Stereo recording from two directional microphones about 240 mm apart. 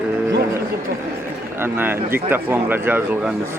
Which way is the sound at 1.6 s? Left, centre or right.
Centre.